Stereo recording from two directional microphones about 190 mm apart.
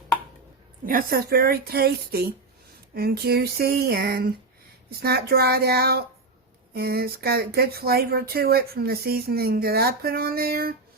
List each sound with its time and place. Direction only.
0.9 s speech: 50° right (ahead or behind)